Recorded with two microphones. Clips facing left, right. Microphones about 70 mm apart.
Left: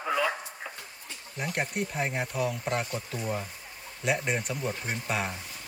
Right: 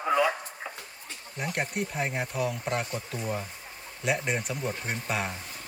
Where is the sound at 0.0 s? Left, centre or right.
Centre.